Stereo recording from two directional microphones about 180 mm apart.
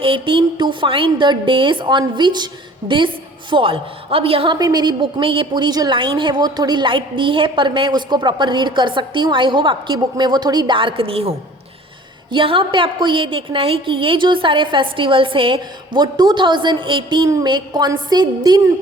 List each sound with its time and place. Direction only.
0.0 s a woman's voice: 30° right (ahead or behind)